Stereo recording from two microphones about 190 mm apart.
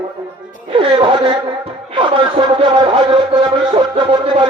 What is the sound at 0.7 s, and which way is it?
A man's voice, 25° right (ahead or behind).